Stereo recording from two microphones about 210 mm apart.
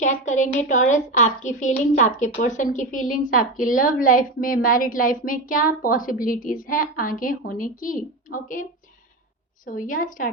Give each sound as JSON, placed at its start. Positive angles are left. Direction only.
{"t": 0.0, "sound": "a woman's voice", "side_deg": 35}
{"t": 9.6, "sound": "a woman's voice", "side_deg": 40}